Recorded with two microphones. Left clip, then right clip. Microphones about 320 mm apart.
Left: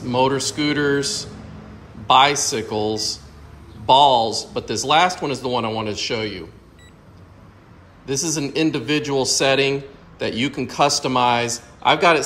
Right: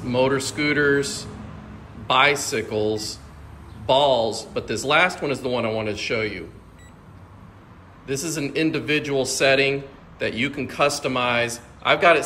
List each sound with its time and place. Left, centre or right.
0.0 s a man's voice: centre
8.1 s a man's voice: centre